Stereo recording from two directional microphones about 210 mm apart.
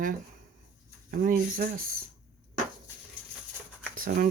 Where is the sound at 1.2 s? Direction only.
40° right (ahead or behind).